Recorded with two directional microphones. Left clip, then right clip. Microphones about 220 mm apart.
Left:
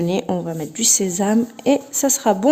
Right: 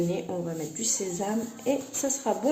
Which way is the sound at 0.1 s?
45° left (ahead or behind).